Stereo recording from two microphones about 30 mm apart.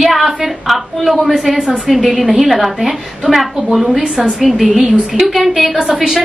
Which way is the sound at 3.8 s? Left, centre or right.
Centre.